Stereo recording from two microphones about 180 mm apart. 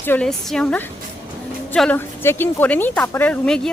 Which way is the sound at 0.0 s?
10° left (ahead or behind).